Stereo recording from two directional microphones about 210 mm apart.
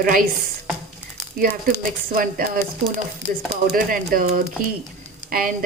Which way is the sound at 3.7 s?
45° right (ahead or behind).